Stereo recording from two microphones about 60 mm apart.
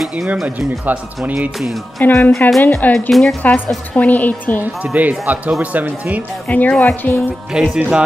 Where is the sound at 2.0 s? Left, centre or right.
Left.